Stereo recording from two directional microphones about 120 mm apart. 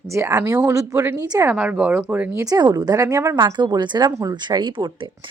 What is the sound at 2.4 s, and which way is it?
Speech, 30° right (ahead or behind).